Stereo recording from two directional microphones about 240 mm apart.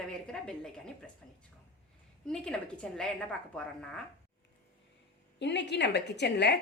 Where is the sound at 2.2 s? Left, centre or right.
Centre.